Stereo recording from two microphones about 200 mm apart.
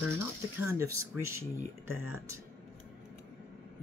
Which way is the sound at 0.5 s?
15° right (ahead or behind).